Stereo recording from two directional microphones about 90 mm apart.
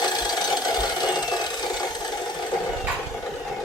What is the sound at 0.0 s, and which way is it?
Wood, 50° left (ahead or behind).